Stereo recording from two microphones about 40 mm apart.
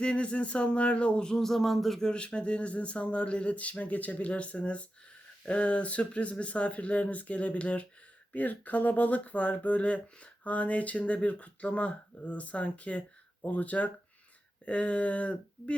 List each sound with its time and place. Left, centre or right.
0.0 s speech: left
1.2 s a sound: centre
2.0 s speech: left